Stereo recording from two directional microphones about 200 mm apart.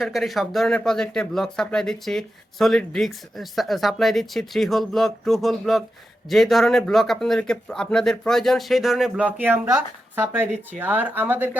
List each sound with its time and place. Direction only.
0.0 s speech: centre (ahead or behind)